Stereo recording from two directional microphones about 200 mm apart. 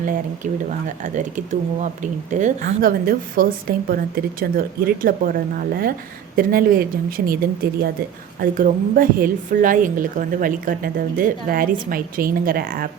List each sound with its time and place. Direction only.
0.7 s speech: 40° right (ahead or behind)
7.2 s speech: 60° right (ahead or behind)
7.6 s speech: 50° right (ahead or behind)